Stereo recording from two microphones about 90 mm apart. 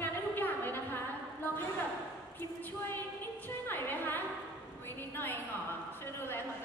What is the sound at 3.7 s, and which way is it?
Music, 20° left (ahead or behind).